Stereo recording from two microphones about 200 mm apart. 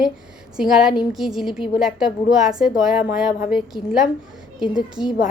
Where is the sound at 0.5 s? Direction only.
5° right (ahead or behind).